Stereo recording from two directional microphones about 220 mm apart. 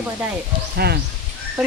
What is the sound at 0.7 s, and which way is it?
Speech, 45° right (ahead or behind).